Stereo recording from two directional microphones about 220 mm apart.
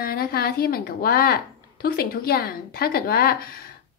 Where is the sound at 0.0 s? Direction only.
45° left (ahead or behind).